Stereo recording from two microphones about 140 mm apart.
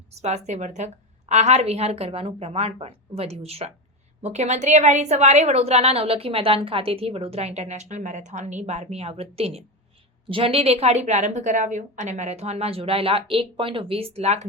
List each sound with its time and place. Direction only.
0.2 s a woman's voice: 50° right (ahead or behind)